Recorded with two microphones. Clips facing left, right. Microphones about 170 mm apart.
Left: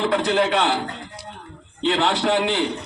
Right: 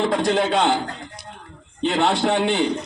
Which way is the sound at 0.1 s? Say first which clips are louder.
Even; 30° right (ahead or behind).